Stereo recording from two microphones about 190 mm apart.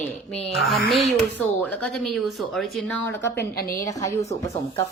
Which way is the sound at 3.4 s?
50° left (ahead or behind).